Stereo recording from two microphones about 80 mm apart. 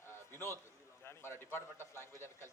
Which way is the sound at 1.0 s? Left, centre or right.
Left.